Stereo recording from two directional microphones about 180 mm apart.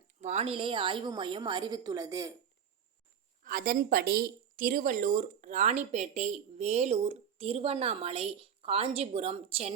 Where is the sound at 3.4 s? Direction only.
55° right (ahead or behind).